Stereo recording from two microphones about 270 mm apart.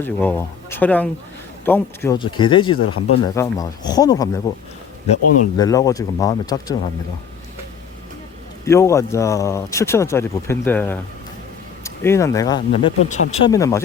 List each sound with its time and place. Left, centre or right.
0.0 s speech: centre
2.7 s speech: left
3.2 s speech: centre
5.5 s speech: centre
8.6 s speech: centre